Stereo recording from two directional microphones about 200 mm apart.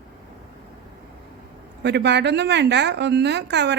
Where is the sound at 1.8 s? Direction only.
60° right (ahead or behind).